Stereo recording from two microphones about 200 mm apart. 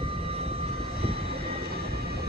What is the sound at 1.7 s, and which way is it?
Vehicle, 50° right (ahead or behind).